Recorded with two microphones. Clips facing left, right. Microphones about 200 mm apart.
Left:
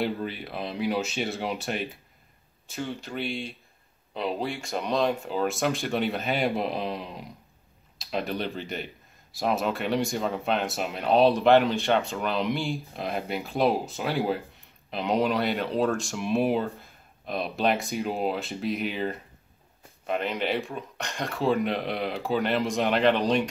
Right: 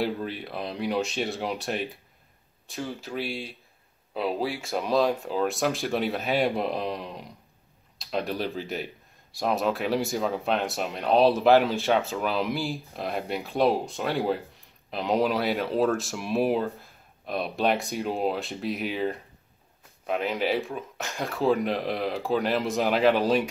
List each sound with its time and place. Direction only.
0.0 s speech: centre (ahead or behind)